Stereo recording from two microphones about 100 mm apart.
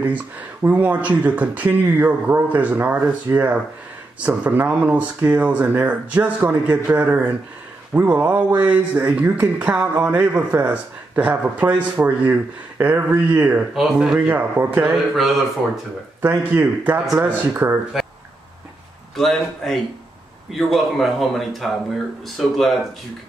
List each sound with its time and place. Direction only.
0.0 s speech: 15° right (ahead or behind)
13.7 s speech: 5° right (ahead or behind)
15.1 s speech: centre (ahead or behind)
16.2 s speech: 20° right (ahead or behind)
17.9 s a sound: 5° right (ahead or behind)
19.1 s speech: 5° left (ahead or behind)